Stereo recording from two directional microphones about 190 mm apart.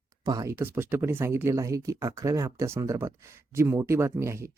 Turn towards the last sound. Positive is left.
turn(degrees=-15)  # may be behind; listen again after turning